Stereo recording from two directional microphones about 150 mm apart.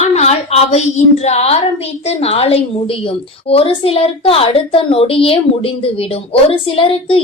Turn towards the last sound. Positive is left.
turn(degrees=35)  # may be behind; listen again after turning